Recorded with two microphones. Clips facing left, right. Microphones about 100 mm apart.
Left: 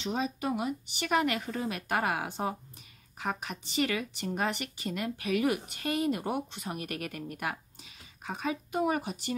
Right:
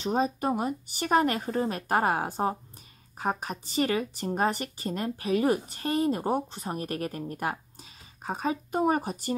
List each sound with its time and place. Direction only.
0.0 s speech: 40° right (ahead or behind)